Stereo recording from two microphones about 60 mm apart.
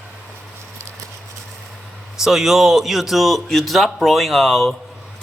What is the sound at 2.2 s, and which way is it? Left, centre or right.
Speech, centre.